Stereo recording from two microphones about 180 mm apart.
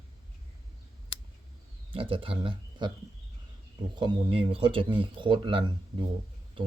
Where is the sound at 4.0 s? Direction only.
30° right (ahead or behind).